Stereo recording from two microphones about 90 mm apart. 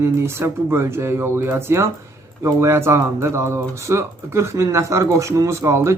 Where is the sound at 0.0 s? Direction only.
30° right (ahead or behind).